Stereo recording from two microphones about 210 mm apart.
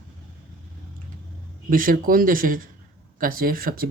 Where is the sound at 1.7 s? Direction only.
40° right (ahead or behind).